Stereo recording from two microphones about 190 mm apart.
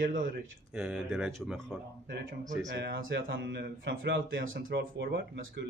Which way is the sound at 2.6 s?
70° right (ahead or behind).